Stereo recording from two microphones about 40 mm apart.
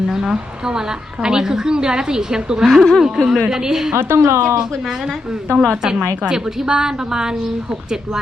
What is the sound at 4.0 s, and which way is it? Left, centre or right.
Speech, right.